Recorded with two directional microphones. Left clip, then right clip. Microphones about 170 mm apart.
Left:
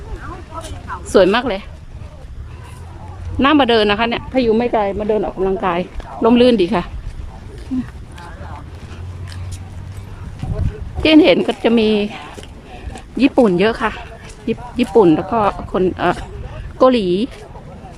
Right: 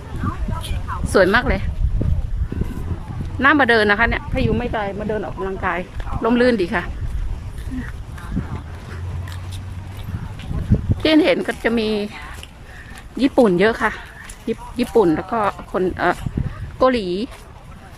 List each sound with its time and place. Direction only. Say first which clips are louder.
1.1 s speech: left 3 dB; 15° left (ahead or behind)
3.3 s speech: left 1 dB; 15° left (ahead or behind)
4.4 s speech: left 9 dB; 25° left (ahead or behind)
11.0 s speech: left 5 dB; 10° left (ahead or behind)